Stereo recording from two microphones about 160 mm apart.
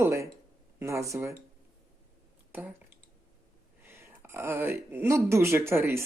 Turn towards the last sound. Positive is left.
turn(degrees=-15)  # may be behind; listen again after turning